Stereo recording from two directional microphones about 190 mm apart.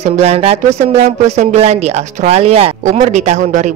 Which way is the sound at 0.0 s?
35° right (ahead or behind).